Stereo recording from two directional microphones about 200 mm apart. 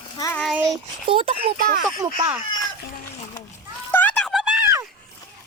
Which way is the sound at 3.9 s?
10° left (ahead or behind).